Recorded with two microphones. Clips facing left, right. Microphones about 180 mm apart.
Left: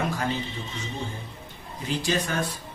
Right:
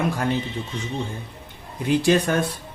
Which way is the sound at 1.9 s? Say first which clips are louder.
Right 8 dB; 60° right (ahead or behind).